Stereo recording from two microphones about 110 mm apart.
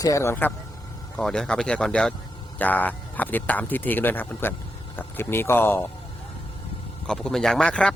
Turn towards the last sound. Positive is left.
turn(degrees=10)  # may be behind; listen again after turning